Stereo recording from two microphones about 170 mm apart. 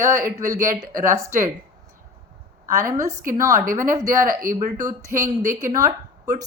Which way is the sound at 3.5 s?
50° right (ahead or behind).